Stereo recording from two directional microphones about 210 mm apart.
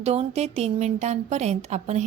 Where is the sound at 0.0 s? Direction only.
30° right (ahead or behind).